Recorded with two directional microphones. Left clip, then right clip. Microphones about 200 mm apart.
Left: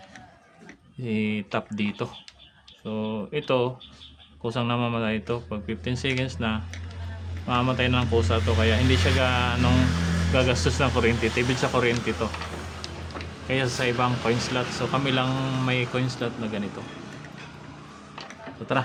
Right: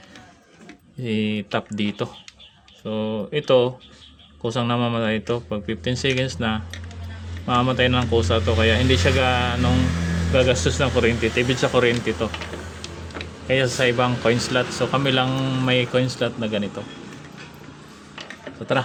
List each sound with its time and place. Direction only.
1.0 s speech: 15° right (ahead or behind)
13.5 s speech: 15° right (ahead or behind)